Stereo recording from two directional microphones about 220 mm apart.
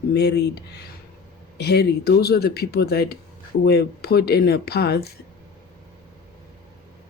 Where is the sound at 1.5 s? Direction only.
50° left (ahead or behind).